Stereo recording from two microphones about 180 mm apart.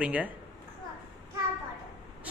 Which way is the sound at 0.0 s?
5° right (ahead or behind).